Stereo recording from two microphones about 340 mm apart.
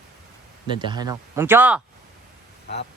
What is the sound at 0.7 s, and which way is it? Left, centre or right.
Speech, centre.